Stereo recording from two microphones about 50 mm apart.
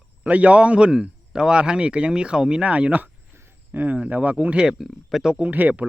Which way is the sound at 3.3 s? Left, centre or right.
Right.